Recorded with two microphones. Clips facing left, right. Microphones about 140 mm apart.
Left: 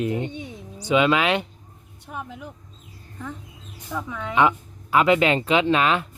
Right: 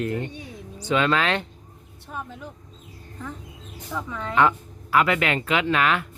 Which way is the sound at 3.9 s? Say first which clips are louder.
Left 1 dB; 5° left (ahead or behind).